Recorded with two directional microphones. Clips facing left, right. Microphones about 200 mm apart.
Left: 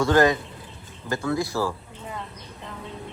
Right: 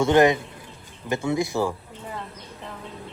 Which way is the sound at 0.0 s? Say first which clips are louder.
Right 2 dB; 20° right (ahead or behind).